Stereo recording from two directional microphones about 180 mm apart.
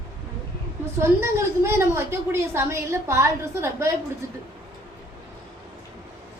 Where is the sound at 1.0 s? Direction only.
15° right (ahead or behind).